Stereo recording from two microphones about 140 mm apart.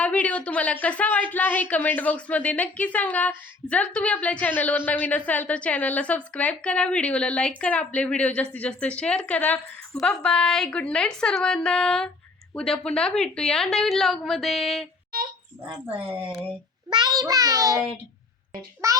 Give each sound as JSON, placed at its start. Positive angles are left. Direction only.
{"t": 0.0, "sound": "a woman's voice", "side_deg": 10}
{"t": 16.9, "sound": "a child's voice", "side_deg": -30}
{"t": 18.8, "sound": "a child's voice", "side_deg": -20}